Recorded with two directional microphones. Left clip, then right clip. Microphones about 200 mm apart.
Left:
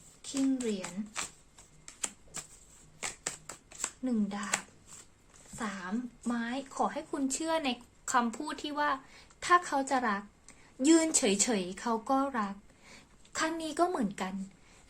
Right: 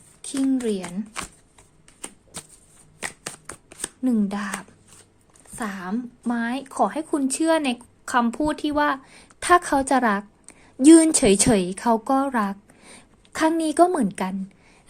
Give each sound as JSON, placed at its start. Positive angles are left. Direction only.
{"t": 0.8, "sound": "zipper", "side_deg": -35}
{"t": 3.0, "sound": "shuffling cards", "side_deg": -30}
{"t": 4.0, "sound": "a woman's voice", "side_deg": -55}
{"t": 5.5, "sound": "a woman's voice", "side_deg": -55}